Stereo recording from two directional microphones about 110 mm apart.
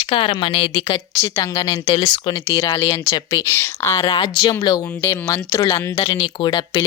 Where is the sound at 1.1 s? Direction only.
25° left (ahead or behind).